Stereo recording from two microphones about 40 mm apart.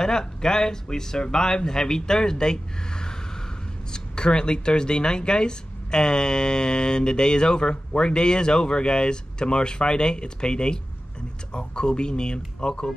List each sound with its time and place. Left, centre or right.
0.0 s speech: centre